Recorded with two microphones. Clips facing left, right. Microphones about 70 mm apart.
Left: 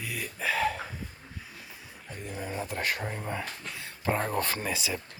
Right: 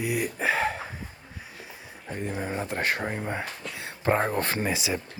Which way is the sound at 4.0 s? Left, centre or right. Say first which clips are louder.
Right 4 dB; right.